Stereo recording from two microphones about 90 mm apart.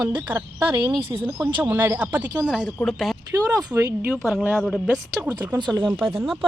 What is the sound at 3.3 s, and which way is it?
Speech, 40° right (ahead or behind).